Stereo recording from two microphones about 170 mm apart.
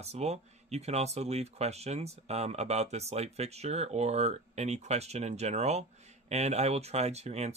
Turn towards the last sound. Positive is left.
turn(degrees=-40)  # may be behind; listen again after turning